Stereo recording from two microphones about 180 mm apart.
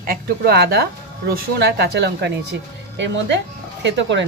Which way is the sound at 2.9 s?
85° right.